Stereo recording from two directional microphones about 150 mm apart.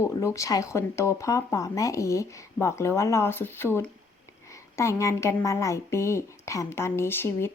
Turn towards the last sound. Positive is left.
turn(degrees=15)  # may be behind; listen again after turning